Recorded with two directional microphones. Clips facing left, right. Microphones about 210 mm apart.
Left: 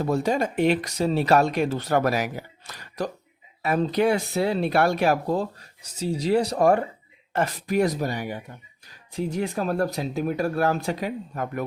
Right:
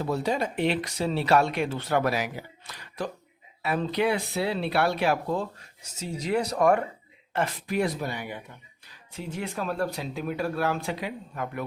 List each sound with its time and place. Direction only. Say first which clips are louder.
0.0 s speech: left 4 dB; 45° left (ahead or behind)
7.3 s speech: left 4 dB; 45° left (ahead or behind)